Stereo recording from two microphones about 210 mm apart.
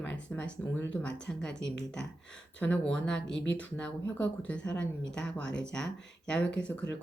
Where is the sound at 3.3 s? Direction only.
60° left (ahead or behind).